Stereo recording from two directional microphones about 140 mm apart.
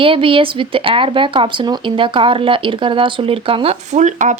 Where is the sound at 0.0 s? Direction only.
40° right (ahead or behind).